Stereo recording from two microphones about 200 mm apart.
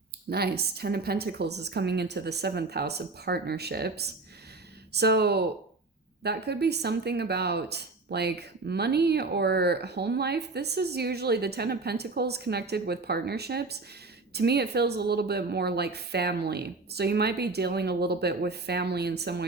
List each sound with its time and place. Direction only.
0.3 s a woman's voice: 55° right (ahead or behind)